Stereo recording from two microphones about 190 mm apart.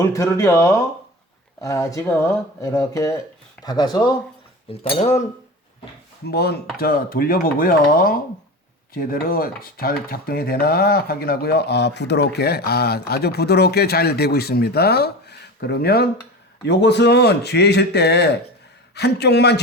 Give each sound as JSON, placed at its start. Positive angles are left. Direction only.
{"t": 0.0, "sound": "speech", "side_deg": 15}
{"t": 4.7, "sound": "speech", "side_deg": 30}
{"t": 6.2, "sound": "chopping", "side_deg": 55}
{"t": 6.7, "sound": "speech", "side_deg": 50}
{"t": 8.9, "sound": "chopping", "side_deg": 50}